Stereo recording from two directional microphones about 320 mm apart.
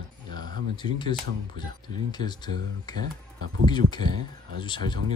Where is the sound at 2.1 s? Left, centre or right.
Centre.